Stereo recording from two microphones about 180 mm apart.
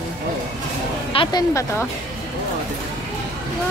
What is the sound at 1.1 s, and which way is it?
Speech, 25° left (ahead or behind).